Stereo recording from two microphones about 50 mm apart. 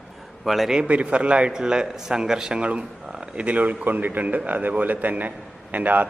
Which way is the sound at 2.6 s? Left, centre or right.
Right.